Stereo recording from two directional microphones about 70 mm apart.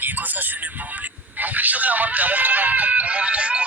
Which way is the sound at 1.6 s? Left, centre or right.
Right.